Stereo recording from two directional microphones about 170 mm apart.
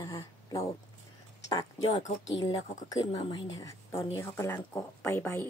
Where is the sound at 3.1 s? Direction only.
30° left (ahead or behind).